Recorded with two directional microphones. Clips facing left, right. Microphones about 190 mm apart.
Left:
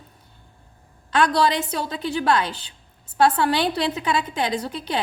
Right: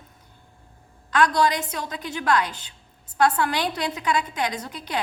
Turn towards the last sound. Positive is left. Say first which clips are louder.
# left 5 dB
turn(degrees=30)  # may be behind; listen again after turning